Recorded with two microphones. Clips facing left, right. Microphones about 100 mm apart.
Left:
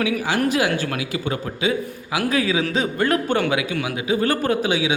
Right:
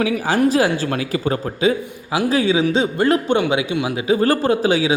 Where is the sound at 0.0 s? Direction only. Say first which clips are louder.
Right 4 dB; 35° right (ahead or behind).